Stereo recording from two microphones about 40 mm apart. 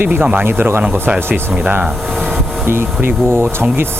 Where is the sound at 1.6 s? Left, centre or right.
Right.